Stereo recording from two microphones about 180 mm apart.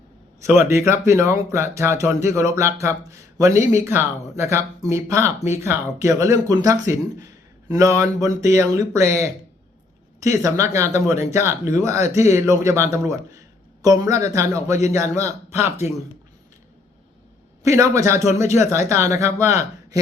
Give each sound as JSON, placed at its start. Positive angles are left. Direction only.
{"t": 0.5, "sound": "speech", "side_deg": -15}
{"t": 17.6, "sound": "speech", "side_deg": -15}